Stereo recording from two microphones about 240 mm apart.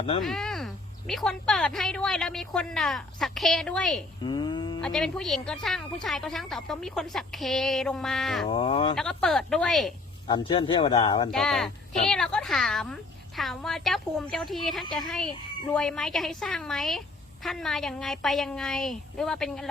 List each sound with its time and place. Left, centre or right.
0.2 s speech: centre
4.2 s a sound: centre
4.8 s speech: centre
8.4 s speech: left
9.0 s speech: centre
10.2 s speech: centre
11.3 s speech: centre